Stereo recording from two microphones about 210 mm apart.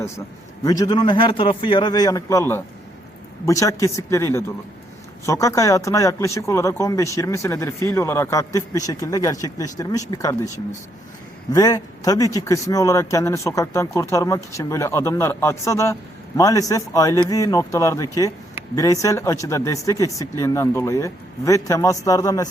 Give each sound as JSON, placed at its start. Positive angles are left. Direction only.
{"t": 0.6, "sound": "a man's voice", "side_deg": 15}
{"t": 11.5, "sound": "speech", "side_deg": 15}